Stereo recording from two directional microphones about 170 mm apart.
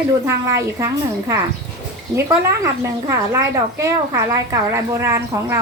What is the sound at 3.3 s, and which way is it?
Speech, 15° right (ahead or behind).